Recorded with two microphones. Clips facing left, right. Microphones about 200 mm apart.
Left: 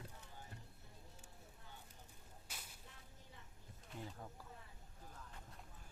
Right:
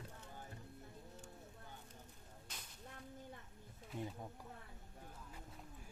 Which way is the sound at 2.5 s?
10° left (ahead or behind).